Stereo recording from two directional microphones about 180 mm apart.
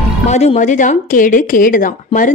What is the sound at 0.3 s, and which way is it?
Speech, 40° left (ahead or behind).